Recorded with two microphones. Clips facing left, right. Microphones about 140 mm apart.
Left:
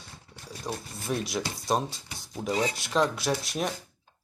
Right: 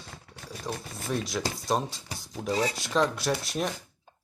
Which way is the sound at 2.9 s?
Centre (ahead or behind).